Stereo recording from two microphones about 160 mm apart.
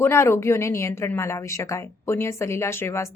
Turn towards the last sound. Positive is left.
turn(degrees=15)  # may be behind; listen again after turning